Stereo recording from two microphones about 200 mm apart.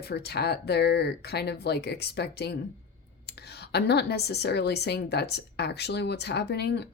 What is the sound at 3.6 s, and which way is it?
Speech, 55° left (ahead or behind).